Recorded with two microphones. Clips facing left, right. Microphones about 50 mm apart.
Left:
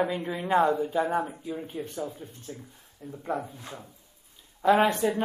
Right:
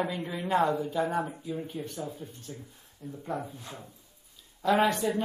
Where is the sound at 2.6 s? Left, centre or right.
Centre.